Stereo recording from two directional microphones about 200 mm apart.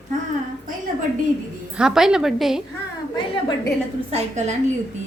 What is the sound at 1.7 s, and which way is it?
Speech, 5° right (ahead or behind).